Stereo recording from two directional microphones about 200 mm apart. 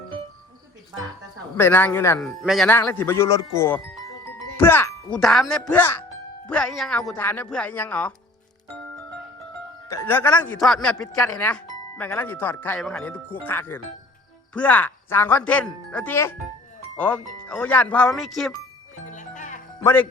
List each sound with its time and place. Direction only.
1.5 s speech: 10° left (ahead or behind)
2.2 s speech: centre (ahead or behind)
2.7 s speech: 10° left (ahead or behind)
4.4 s music: 10° left (ahead or behind)
5.1 s speech: centre (ahead or behind)
9.9 s speech: 10° left (ahead or behind)
18.9 s music: 40° left (ahead or behind)
19.8 s speech: 10° left (ahead or behind)